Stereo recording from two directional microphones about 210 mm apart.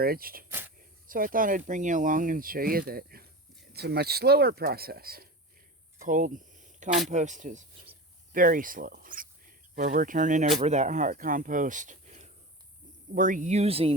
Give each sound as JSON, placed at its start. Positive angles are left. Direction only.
{"t": 0.0, "sound": "speech", "side_deg": -45}
{"t": 0.4, "sound": "a sound", "side_deg": -10}
{"t": 1.0, "sound": "speech", "side_deg": -40}